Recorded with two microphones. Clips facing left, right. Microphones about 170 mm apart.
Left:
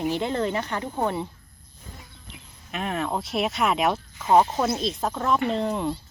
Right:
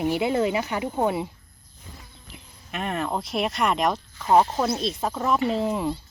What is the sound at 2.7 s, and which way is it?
Speech, centre (ahead or behind).